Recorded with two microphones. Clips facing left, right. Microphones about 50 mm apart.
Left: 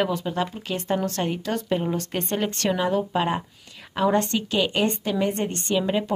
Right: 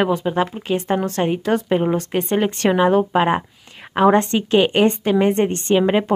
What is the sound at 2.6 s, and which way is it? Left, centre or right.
A woman's voice, right.